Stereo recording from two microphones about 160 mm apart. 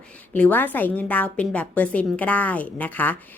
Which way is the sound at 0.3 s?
10° left (ahead or behind).